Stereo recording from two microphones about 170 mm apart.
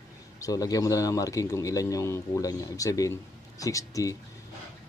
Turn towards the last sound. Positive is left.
turn(degrees=20)  # may be behind; listen again after turning